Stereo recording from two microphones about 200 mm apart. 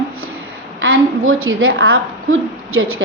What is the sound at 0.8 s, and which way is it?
A woman's voice, 85° right.